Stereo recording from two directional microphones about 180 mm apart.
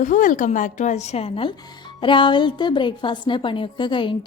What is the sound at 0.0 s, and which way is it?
A woman's voice, 45° left (ahead or behind).